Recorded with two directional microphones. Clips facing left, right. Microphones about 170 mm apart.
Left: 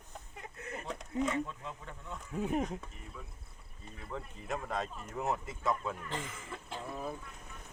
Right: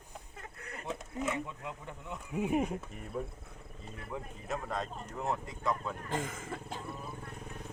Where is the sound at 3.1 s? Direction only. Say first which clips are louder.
Right 14 dB; 50° right (ahead or behind).